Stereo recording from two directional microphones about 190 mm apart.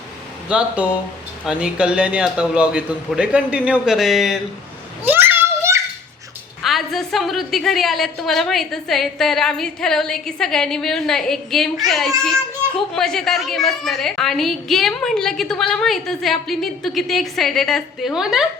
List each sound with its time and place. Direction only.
0.4 s a woman's voice: 5° right (ahead or behind)
5.0 s children playing: 10° right (ahead or behind)
6.6 s a woman's voice: centre (ahead or behind)